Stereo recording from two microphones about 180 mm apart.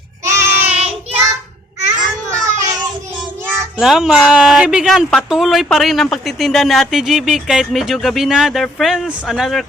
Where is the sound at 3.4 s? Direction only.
10° right (ahead or behind).